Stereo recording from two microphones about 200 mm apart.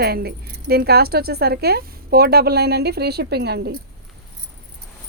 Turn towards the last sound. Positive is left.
turn(degrees=-55)  # may be behind; listen again after turning